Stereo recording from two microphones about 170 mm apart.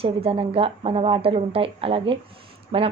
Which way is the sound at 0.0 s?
35° right (ahead or behind).